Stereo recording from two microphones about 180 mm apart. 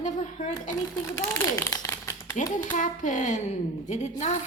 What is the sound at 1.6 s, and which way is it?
Crumpling, 15° left (ahead or behind).